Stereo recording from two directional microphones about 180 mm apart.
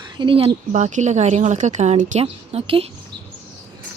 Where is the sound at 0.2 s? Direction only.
30° right (ahead or behind).